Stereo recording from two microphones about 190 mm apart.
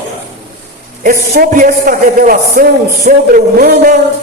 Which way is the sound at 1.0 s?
45° right (ahead or behind).